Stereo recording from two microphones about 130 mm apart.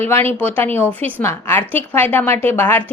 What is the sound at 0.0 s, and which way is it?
A woman's voice, 15° left (ahead or behind).